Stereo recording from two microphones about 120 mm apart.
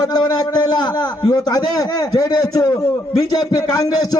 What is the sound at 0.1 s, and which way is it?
A man's voice, 35° left (ahead or behind).